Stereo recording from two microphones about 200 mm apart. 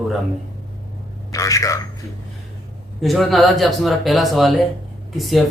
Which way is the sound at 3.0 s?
Centre (ahead or behind).